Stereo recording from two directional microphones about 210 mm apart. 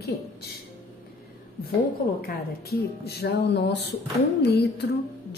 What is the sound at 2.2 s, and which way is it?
A woman's voice, 50° left (ahead or behind).